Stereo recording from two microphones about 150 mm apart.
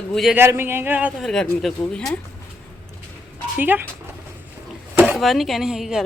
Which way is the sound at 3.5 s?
10° right (ahead or behind).